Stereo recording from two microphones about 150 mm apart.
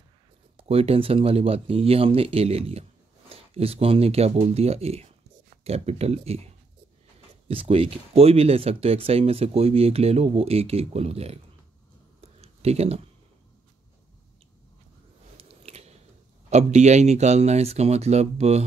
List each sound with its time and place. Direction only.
0.6 s speech: 40° right (ahead or behind)
12.2 s a sound: 45° right (ahead or behind)
15.3 s biting: 40° right (ahead or behind)
16.4 s speech: 50° right (ahead or behind)